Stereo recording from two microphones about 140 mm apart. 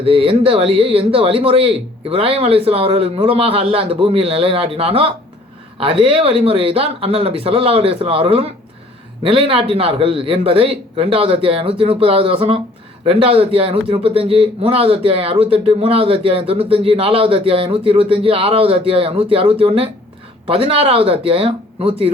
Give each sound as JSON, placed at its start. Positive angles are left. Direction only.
{"t": 0.0, "sound": "a man's voice", "side_deg": -40}